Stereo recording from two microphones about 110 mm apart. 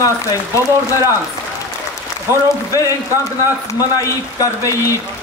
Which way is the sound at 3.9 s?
30° left (ahead or behind).